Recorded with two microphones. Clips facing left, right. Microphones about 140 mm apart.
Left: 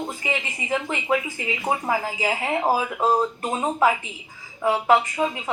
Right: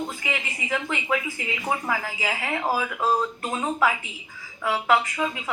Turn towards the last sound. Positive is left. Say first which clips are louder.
# left 3 dB
turn(degrees=25)  # may be behind; listen again after turning